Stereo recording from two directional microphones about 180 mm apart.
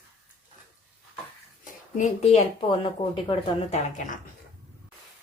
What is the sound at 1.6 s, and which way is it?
A woman's voice, 40° left (ahead or behind).